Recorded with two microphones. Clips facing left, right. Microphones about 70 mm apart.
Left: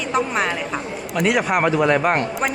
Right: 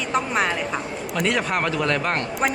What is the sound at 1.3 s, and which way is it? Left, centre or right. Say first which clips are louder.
Speech: left 5 dB; centre.